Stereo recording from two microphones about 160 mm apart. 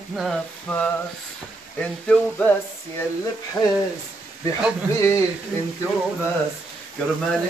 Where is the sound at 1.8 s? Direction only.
5° left (ahead or behind).